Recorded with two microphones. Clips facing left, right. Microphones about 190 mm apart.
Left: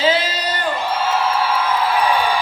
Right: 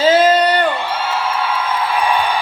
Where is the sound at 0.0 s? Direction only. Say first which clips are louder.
Right 8 dB; 45° right (ahead or behind); by 0.7 s 65° right (ahead or behind).